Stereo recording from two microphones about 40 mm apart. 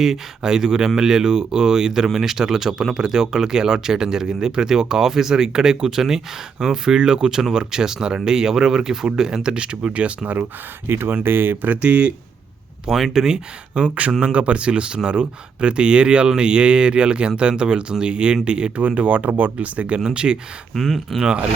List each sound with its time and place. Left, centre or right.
0.0 s speech: centre; by 10.1 s right
10.8 s speech: right
11.1 s speech: right
11.7 s speech: right
12.9 s speech: centre
13.7 s speech: right
18.9 s speech: right
20.1 s speech: right
20.7 s speech: centre
21.2 s speech: right